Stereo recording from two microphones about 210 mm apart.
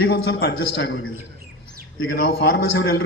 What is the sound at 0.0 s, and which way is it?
A man's voice, 50° left (ahead or behind).